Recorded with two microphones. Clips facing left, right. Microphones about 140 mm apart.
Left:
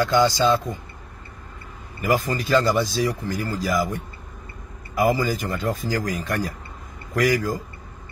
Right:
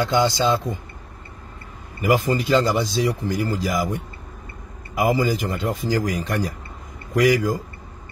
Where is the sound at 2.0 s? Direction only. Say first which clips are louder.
Right 3 dB; 20° right (ahead or behind).